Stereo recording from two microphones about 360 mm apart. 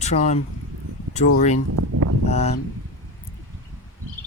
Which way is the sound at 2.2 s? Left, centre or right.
Centre.